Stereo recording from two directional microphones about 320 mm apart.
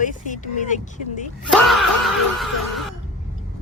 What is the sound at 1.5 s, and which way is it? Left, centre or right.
Speech, centre.